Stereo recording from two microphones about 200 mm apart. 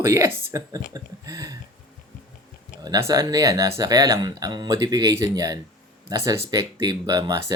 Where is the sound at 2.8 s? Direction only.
15° right (ahead or behind).